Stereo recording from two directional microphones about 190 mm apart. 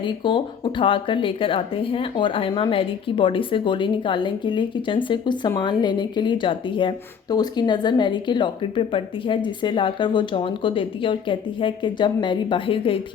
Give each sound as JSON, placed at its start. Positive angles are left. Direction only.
{"t": 0.0, "sound": "speech", "side_deg": 25}